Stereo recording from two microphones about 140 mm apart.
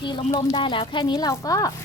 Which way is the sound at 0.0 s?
35° left (ahead or behind).